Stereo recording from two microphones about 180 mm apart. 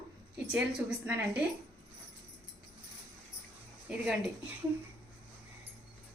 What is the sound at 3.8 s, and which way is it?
Speech, 5° right (ahead or behind).